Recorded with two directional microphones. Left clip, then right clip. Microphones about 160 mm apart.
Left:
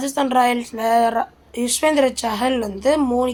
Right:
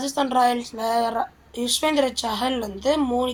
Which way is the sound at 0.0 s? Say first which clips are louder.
Left 3 dB; 40° left (ahead or behind).